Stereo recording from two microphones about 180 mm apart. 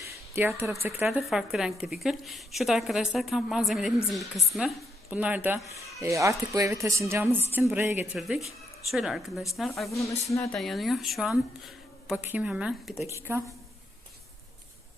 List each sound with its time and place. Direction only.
0.0 s a sound: 10° right (ahead or behind)
0.8 s a woman's voice: 15° right (ahead or behind)
9.9 s speech: 15° left (ahead or behind)
10.5 s a woman's voice: centre (ahead or behind); by 13.4 s 15° right (ahead or behind)